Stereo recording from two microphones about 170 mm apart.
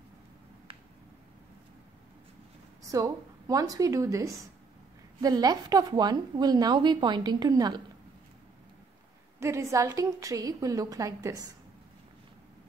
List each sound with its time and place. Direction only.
2.9 s a woman's voice: 20° right (ahead or behind)
9.4 s a woman's voice: 15° right (ahead or behind)